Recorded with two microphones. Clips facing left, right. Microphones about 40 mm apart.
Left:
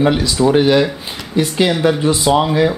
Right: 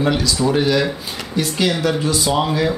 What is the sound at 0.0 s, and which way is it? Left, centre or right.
Speech, centre.